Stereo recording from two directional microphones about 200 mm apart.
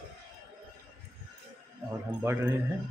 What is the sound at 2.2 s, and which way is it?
Speech, 10° right (ahead or behind).